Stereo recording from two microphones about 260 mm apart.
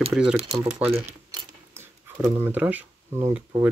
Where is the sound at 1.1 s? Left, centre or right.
Centre.